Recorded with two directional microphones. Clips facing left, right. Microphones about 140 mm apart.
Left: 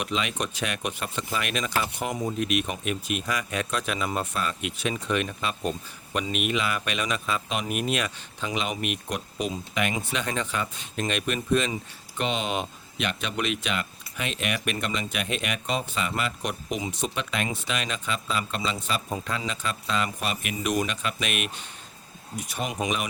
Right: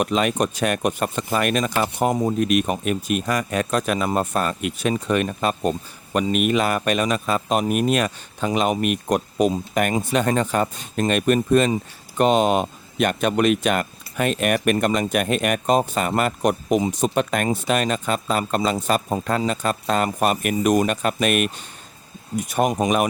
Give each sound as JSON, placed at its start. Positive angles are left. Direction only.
{"t": 0.0, "sound": "a man's voice", "side_deg": -45}